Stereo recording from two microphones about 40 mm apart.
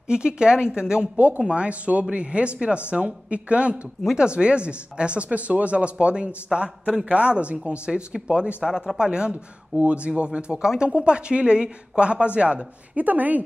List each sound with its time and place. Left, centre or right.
0.1 s speech: right
1.1 s speech: right
1.4 s speech: right
8.6 s speech: centre
9.3 s speech: right
12.9 s speech: right